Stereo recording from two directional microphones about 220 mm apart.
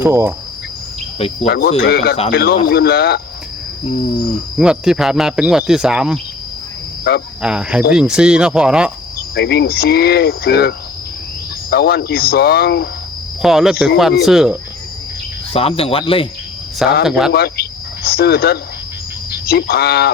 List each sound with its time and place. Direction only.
0.0 s cricket: 10° right (ahead or behind)
1.5 s cricket: 45° left (ahead or behind)
4.5 s speech: 5° right (ahead or behind)
7.4 s speech: 5° right (ahead or behind)
9.3 s cricket: 50° left (ahead or behind)
13.4 s speech: centre (ahead or behind)
15.5 s speech: 25° left (ahead or behind)
16.7 s speech: centre (ahead or behind)
17.3 s speech: 45° left (ahead or behind)
19.5 s cricket: 45° left (ahead or behind)